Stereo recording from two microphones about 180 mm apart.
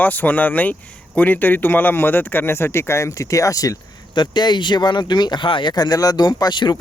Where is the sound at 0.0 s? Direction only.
10° left (ahead or behind).